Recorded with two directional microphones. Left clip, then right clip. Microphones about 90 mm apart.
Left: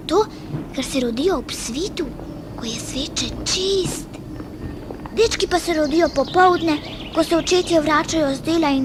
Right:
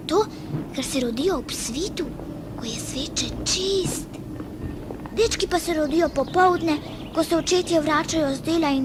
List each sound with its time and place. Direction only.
0.1 s speech: 20° left (ahead or behind)
5.1 s speech: 35° left (ahead or behind)